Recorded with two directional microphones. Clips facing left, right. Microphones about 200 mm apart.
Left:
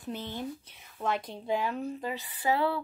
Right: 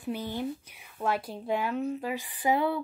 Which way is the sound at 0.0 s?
10° right (ahead or behind).